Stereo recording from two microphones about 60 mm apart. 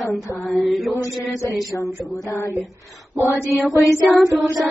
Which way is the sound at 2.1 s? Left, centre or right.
Left.